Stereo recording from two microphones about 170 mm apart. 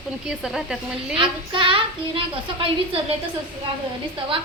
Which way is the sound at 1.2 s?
30° right (ahead or behind).